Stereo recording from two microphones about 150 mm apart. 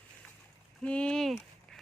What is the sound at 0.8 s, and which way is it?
Speech, 5° left (ahead or behind).